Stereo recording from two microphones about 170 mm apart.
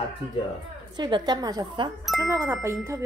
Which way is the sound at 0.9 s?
25° right (ahead or behind).